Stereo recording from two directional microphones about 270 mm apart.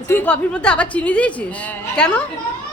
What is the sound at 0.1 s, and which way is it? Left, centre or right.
A child's voice, centre.